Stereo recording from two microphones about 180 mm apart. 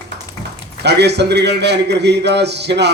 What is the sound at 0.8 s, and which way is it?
A man's voice, 70° right (ahead or behind).